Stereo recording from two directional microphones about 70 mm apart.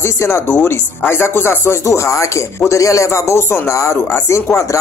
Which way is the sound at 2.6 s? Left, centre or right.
Left.